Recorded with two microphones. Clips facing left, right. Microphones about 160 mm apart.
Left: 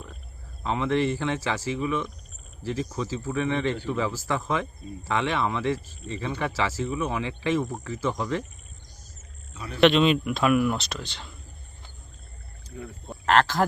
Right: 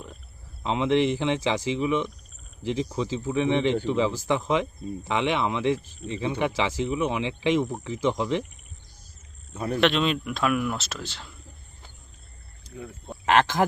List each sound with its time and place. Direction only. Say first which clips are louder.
0.6 s speech: right 2 dB; 20° right (ahead or behind)
9.5 s speech: right 9 dB; 50° right (ahead or behind)
9.8 s speech: left 5 dB; centre (ahead or behind)
13.2 s speech: even; 15° right (ahead or behind)